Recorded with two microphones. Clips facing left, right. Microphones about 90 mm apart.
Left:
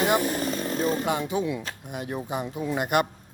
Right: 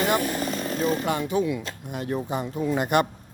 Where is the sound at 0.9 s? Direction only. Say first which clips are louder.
Right 1 dB; 15° left (ahead or behind).